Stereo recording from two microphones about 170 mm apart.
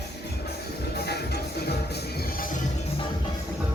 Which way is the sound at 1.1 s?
70° left (ahead or behind).